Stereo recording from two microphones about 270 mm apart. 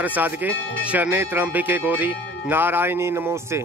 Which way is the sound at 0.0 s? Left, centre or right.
Centre.